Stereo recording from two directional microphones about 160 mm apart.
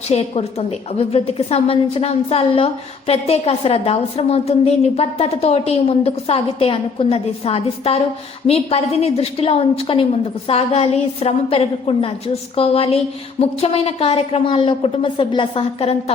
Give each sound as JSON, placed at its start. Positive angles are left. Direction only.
{"t": 0.1, "sound": "a woman's voice", "side_deg": 40}